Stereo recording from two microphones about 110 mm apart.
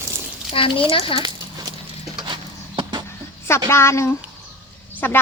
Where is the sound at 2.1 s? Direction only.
45° right (ahead or behind).